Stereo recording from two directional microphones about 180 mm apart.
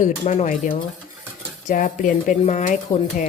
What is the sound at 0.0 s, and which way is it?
Speech, 45° left (ahead or behind).